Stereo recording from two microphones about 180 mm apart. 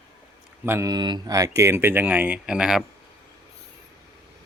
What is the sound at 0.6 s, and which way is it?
Mantra, 15° right (ahead or behind).